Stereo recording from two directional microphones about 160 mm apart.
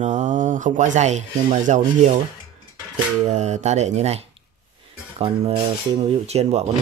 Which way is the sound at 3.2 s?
45° right (ahead or behind).